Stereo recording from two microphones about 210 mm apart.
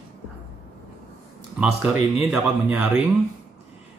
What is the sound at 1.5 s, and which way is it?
Speech, 5° right (ahead or behind).